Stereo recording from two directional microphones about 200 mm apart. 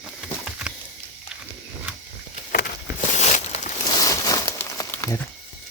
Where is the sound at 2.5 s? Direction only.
45° left (ahead or behind).